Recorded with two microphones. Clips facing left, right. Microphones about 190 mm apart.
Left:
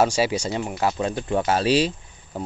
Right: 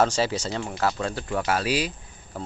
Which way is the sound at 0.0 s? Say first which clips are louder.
Left 2 dB; 10° left (ahead or behind).